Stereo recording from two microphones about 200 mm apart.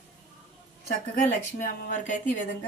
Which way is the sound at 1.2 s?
40° left (ahead or behind).